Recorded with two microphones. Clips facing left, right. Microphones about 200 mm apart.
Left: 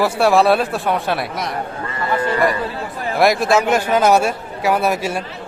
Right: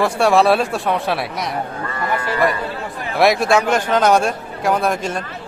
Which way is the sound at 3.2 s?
Centre (ahead or behind).